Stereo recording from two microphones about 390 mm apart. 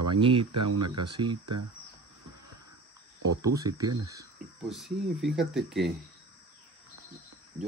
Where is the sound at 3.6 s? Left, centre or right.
Centre.